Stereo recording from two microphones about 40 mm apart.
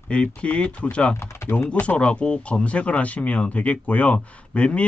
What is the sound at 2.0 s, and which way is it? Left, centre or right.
Speech, left.